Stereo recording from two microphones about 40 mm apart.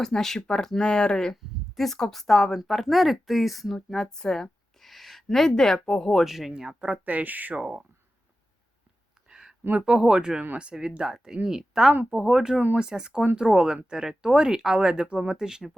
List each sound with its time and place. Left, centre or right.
0.0 s speech: centre
0.9 s speech: left
1.7 s a woman's voice: centre
6.2 s speech: centre
6.7 s speech: right
7.0 s speech: right
7.6 s speech: centre
9.3 s a sound: centre
9.7 s speech: right